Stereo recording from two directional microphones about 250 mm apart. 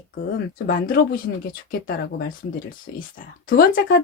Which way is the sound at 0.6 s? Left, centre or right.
Left.